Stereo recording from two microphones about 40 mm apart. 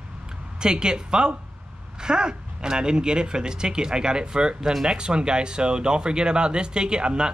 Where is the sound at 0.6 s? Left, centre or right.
Right.